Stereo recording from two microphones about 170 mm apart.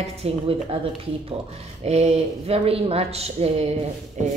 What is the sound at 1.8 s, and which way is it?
Speech, 40° right (ahead or behind).